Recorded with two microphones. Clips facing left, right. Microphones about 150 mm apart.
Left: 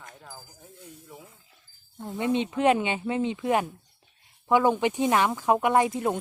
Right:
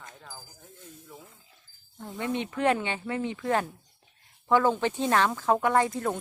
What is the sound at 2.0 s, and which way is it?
Speech, 20° left (ahead or behind).